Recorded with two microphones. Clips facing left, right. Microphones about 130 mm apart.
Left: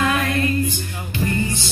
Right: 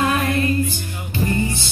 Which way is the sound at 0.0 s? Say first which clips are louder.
Right 1 dB; 25° right (ahead or behind).